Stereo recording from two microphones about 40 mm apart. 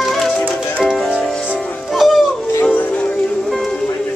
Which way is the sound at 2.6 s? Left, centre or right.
Left.